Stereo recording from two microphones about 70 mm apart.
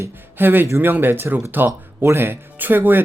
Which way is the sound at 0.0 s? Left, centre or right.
Right.